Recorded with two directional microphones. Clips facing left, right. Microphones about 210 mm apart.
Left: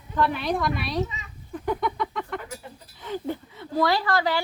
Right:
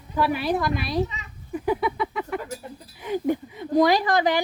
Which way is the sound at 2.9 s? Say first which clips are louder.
Right 6 dB; 15° right (ahead or behind).